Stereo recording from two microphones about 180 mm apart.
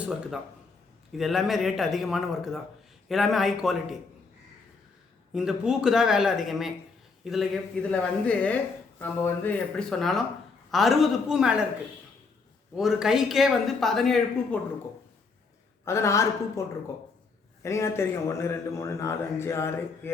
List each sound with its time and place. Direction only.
1.1 s speech: centre (ahead or behind)
5.3 s a man's voice: 5° right (ahead or behind)
12.7 s speech: centre (ahead or behind)
15.8 s a man's voice: 15° left (ahead or behind)